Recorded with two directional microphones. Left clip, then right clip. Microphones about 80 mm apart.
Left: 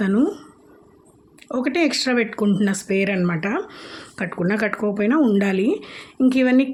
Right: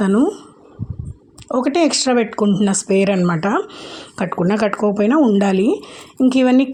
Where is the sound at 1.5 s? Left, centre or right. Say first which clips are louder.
Right 5 dB; right.